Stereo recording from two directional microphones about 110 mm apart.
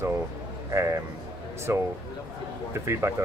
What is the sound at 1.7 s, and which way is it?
Speech, 20° right (ahead or behind).